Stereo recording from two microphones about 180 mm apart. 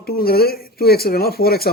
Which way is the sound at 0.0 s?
60° left (ahead or behind).